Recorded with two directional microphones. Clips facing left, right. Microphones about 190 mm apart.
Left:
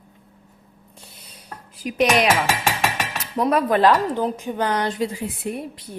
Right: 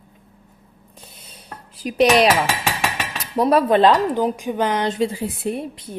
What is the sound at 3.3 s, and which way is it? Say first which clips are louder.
Speech: right 3 dB; 30° right (ahead or behind).